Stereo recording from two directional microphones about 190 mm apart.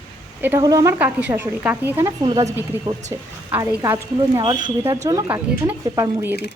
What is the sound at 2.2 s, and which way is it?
Speech, 25° right (ahead or behind).